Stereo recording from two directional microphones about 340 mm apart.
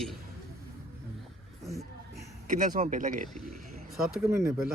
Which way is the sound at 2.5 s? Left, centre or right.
Right.